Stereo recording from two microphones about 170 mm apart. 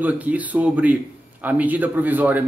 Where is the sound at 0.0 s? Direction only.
10° right (ahead or behind).